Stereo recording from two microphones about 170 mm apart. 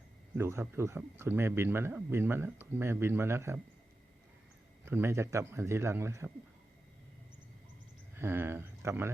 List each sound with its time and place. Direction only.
0.3 s speech: 15° right (ahead or behind)
4.9 s speech: 15° right (ahead or behind)
8.1 s speech: 15° right (ahead or behind)